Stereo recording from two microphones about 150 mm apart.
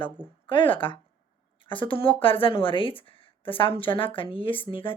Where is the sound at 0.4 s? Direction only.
35° left (ahead or behind).